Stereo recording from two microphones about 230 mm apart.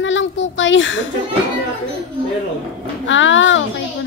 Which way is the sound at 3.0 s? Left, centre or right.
Left.